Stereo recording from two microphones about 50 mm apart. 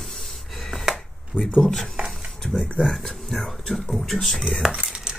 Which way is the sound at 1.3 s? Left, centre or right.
Left.